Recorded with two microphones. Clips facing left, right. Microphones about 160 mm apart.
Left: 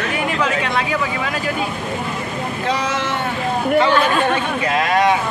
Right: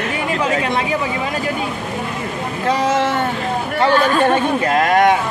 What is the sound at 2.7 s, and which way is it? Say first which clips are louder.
Vehicle: right 5 dB; 45° right (ahead or behind).